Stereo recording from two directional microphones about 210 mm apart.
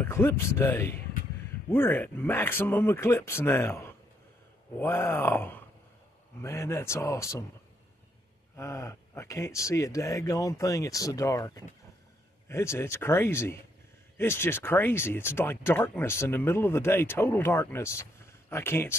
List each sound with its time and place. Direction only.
0.0 s speech: 10° left (ahead or behind)
8.5 s speech: 15° left (ahead or behind)